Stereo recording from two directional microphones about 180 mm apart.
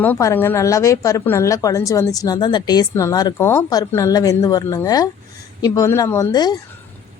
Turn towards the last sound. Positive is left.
turn(degrees=20)  # may be behind; listen again after turning